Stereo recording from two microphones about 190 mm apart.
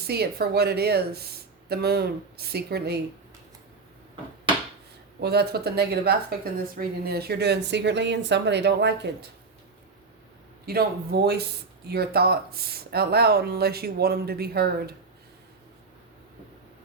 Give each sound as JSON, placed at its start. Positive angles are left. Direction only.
{"t": 0.0, "sound": "speech", "side_deg": -55}
{"t": 5.2, "sound": "speech", "side_deg": -60}
{"t": 10.7, "sound": "speech", "side_deg": -55}